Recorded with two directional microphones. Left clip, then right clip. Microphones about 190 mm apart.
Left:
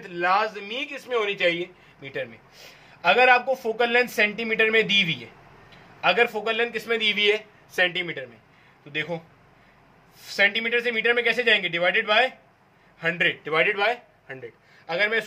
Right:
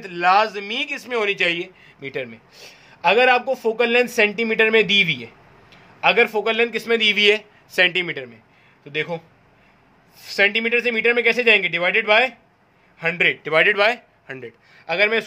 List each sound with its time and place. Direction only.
0.0 s a man's voice: 55° right (ahead or behind)
10.1 s a man's voice: 55° right (ahead or behind)